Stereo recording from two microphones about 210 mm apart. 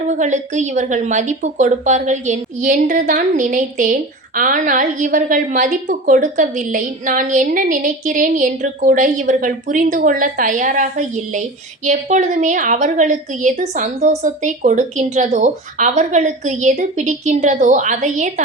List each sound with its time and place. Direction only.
0.1 s speech: 35° right (ahead or behind)